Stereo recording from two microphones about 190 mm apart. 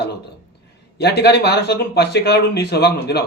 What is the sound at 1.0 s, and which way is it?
Speech, 60° left (ahead or behind).